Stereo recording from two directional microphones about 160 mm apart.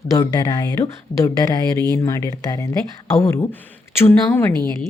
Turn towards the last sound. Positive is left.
turn(degrees=15)  # may be behind; listen again after turning